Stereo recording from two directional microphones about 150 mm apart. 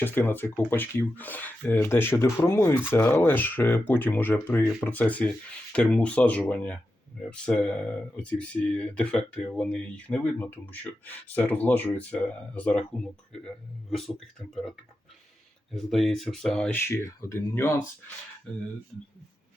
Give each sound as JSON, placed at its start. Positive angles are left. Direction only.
{"t": 0.0, "sound": "speech", "side_deg": 15}
{"t": 13.9, "sound": "speech", "side_deg": 0}
{"t": 15.7, "sound": "speech", "side_deg": 0}